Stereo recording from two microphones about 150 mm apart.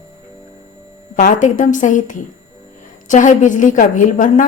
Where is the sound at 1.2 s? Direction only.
60° left (ahead or behind).